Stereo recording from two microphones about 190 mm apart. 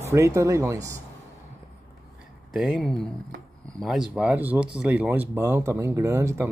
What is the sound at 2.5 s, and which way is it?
Speech, centre (ahead or behind).